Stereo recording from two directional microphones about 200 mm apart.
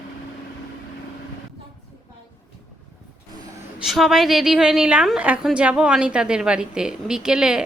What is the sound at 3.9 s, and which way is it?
A woman's voice, centre (ahead or behind).